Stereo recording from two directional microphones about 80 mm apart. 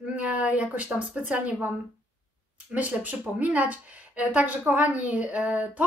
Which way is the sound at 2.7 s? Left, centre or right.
Centre.